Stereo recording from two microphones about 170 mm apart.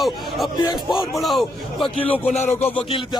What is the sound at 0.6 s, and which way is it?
Speech, 25° left (ahead or behind).